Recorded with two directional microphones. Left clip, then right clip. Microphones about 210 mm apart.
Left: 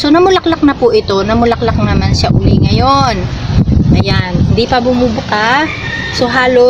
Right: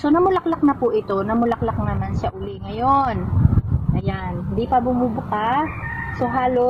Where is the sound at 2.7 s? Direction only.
5° right (ahead or behind).